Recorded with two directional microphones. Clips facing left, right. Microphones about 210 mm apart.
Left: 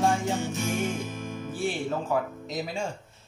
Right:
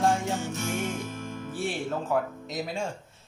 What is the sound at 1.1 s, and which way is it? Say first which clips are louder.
Music: left 1 dB; 15° left (ahead or behind).